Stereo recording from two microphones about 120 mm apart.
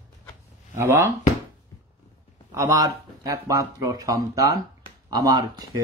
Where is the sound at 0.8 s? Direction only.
20° right (ahead or behind).